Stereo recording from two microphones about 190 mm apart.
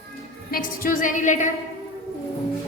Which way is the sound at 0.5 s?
45° left (ahead or behind).